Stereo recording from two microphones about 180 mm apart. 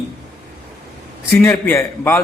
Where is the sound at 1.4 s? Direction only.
10° left (ahead or behind).